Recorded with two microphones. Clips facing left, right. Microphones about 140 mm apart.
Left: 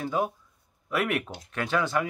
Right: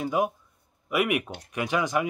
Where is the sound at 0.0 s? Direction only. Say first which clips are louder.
Right 2 dB; 15° right (ahead or behind).